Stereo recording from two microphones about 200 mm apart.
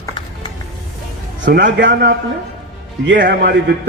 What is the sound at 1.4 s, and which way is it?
Speech, 45° right (ahead or behind).